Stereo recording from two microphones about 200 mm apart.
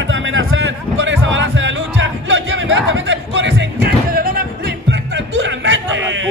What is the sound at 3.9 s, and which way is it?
Music, 50° right (ahead or behind).